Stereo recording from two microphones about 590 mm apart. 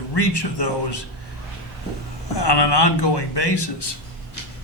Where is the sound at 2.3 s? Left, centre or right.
Left.